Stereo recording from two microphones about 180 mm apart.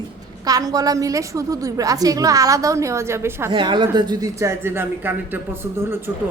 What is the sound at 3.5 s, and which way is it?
Speech, 25° right (ahead or behind).